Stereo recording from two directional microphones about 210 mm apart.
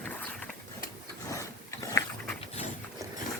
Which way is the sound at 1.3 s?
15° left (ahead or behind).